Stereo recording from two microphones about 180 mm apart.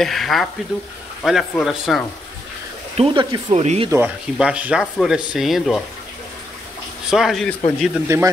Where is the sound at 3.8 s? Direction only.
15° right (ahead or behind).